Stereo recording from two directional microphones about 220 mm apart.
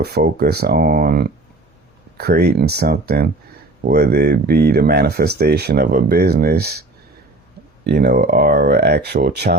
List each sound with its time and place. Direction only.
0.0 s speech: 45° right (ahead or behind)
7.9 s speech: 45° right (ahead or behind)